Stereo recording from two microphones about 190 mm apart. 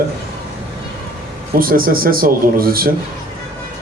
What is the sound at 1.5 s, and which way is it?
Speech, 50° right (ahead or behind).